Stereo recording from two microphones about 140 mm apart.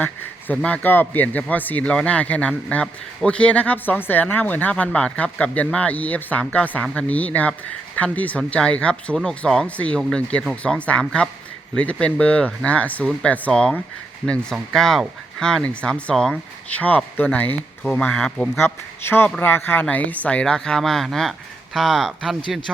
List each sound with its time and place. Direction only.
0.0 s a man's voice: 10° left (ahead or behind)
18.5 s a man's voice: 15° left (ahead or behind); by 22.7 s centre (ahead or behind)